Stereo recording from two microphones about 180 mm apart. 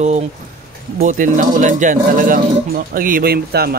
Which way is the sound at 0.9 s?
45° right (ahead or behind).